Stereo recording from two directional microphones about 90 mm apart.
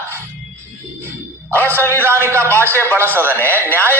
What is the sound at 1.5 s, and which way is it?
Speech, 25° right (ahead or behind).